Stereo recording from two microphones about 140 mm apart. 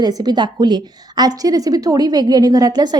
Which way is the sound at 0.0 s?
30° right (ahead or behind).